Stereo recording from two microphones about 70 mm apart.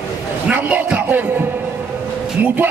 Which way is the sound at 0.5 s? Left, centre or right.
Right.